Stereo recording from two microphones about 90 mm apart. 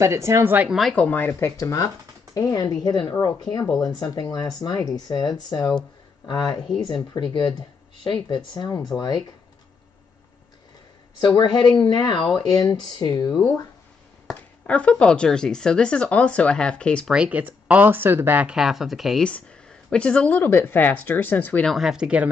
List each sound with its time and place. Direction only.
0.0 s speech: 30° right (ahead or behind)
0.7 s speech: centre (ahead or behind)
0.9 s speech: 15° left (ahead or behind)
1.6 s speech: 40° left (ahead or behind)
3.6 s speech: 5° left (ahead or behind)
3.9 s speech: 45° left (ahead or behind)
11.1 s speech: 55° left (ahead or behind)
14.2 s speech: 15° left (ahead or behind)
17.1 s speech: 15° right (ahead or behind)
18.6 s speech: 5° right (ahead or behind)
19.9 s speech: 10° left (ahead or behind)
20.4 s speech: 25° left (ahead or behind)
21.6 s speech: 5° right (ahead or behind)